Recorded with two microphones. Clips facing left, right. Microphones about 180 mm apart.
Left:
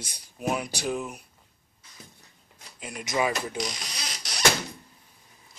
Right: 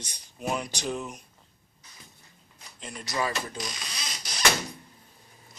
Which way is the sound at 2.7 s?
10° left (ahead or behind).